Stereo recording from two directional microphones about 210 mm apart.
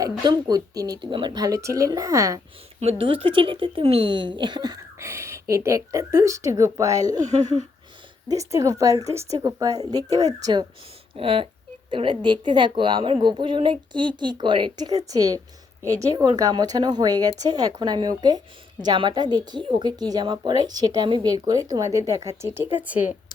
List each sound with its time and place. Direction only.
0.0 s speech: 20° right (ahead or behind)
2.8 s speech: 25° right (ahead or behind)
7.3 s a sound: 35° right (ahead or behind)
8.3 s speech: 15° right (ahead or behind)